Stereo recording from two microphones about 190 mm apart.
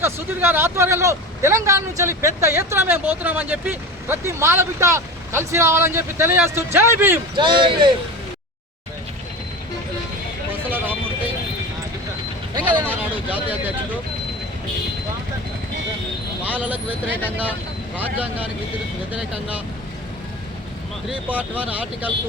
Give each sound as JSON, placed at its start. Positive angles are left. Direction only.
{"t": 0.0, "sound": "speech", "side_deg": -10}
{"t": 7.3, "sound": "speech", "side_deg": -25}
{"t": 10.5, "sound": "vehicle", "side_deg": -10}
{"t": 12.8, "sound": "a sound", "side_deg": -10}
{"t": 13.2, "sound": "speech", "side_deg": -10}
{"t": 16.4, "sound": "speech", "side_deg": -10}
{"t": 21.1, "sound": "speech", "side_deg": -10}